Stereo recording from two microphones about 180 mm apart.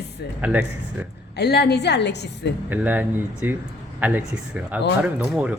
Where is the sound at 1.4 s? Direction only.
65° left (ahead or behind).